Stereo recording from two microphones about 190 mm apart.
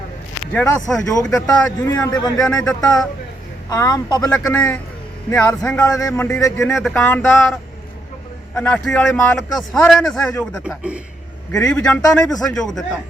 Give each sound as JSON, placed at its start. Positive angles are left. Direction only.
{"t": 0.5, "sound": "a man's voice", "side_deg": 5}
{"t": 1.9, "sound": "a man's voice", "side_deg": 20}
{"t": 2.4, "sound": "a man's voice", "side_deg": 5}
{"t": 3.7, "sound": "a man's voice", "side_deg": 20}
{"t": 4.5, "sound": "speech", "side_deg": 10}
{"t": 6.8, "sound": "a man's voice", "side_deg": 0}